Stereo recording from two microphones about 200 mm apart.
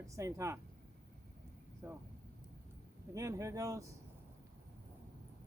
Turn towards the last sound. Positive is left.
turn(degrees=-15)  # may be behind; listen again after turning